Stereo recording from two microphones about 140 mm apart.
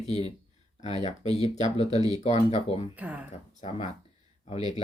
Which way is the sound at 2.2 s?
50° left (ahead or behind).